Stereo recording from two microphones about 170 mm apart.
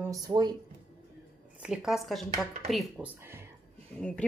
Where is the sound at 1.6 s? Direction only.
5° right (ahead or behind).